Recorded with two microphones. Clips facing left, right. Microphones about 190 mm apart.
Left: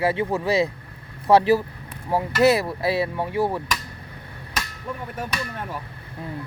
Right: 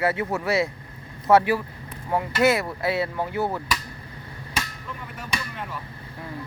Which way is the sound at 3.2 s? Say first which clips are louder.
Left 2 dB; 25° left (ahead or behind).